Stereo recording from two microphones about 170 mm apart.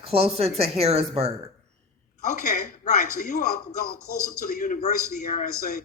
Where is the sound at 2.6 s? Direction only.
50° left (ahead or behind).